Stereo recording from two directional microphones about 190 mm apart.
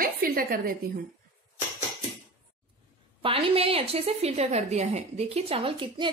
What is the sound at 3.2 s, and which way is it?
A woman's voice, 30° right (ahead or behind).